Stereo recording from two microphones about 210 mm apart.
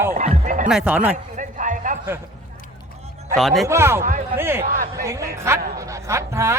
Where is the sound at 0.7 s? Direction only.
5° right (ahead or behind).